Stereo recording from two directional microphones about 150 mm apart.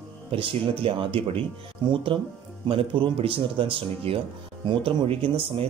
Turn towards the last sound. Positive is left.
turn(degrees=-40)  # may be behind; listen again after turning